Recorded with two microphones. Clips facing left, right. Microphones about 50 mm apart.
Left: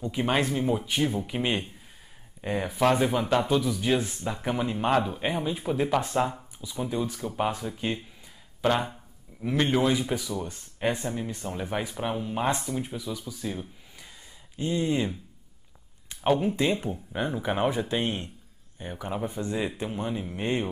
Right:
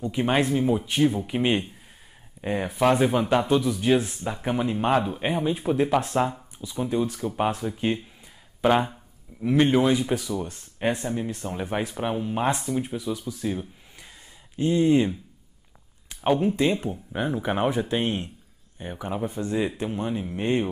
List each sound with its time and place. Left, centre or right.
0.0 s speech: centre
13.4 s a sound: centre
14.6 s speech: centre
16.3 s speech: centre